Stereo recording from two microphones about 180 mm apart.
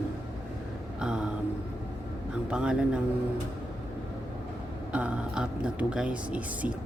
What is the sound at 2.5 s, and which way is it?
Speech, 5° right (ahead or behind).